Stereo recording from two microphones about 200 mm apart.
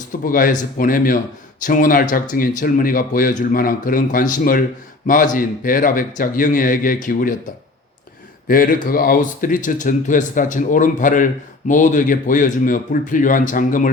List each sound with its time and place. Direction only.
0.3 s a man's voice: 45° left (ahead or behind)
8.4 s speech: 45° left (ahead or behind)